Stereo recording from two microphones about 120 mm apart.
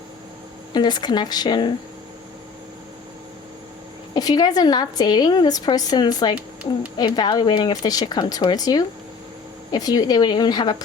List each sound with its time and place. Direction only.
0.7 s speech: 35° left (ahead or behind)
4.1 s speech: 35° left (ahead or behind)
6.3 s speech: 10° right (ahead or behind)
6.9 s speech: 40° left (ahead or behind)